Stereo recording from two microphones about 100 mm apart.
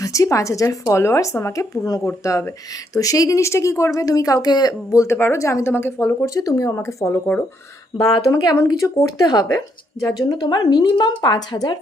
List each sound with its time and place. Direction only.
0.0 s speech: 35° left (ahead or behind)
6.2 s speech: 35° left (ahead or behind)